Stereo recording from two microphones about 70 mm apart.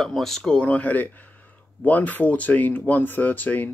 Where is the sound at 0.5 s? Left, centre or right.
Left.